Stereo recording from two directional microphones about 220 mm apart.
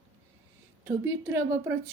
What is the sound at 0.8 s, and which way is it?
Speech, 10° right (ahead or behind).